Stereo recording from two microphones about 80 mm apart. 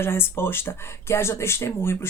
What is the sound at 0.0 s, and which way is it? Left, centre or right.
Speech, left.